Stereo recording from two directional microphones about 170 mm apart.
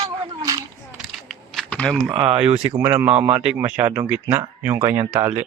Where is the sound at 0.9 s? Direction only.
Centre (ahead or behind).